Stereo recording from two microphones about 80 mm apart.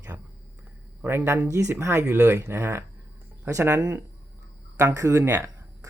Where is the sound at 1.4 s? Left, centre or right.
Right.